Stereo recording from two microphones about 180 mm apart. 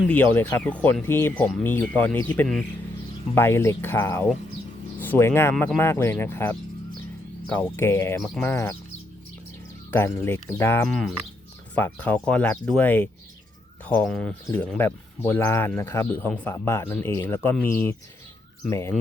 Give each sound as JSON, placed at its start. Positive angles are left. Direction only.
{"t": 0.1, "sound": "speech", "side_deg": 10}
{"t": 9.9, "sound": "speech", "side_deg": 15}